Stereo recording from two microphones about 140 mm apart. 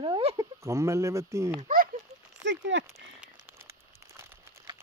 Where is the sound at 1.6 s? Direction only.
80° right.